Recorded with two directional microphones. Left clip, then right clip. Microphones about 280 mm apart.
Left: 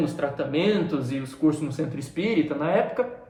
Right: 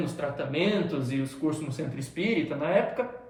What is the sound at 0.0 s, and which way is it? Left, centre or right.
A woman's voice, centre.